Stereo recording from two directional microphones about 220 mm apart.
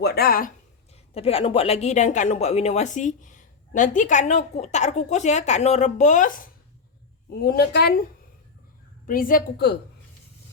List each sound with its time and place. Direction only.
0.0 s speech: 45° left (ahead or behind)
0.9 s a woman's voice: 25° left (ahead or behind); by 8.0 s 45° left (ahead or behind)
9.0 s speech: 40° left (ahead or behind)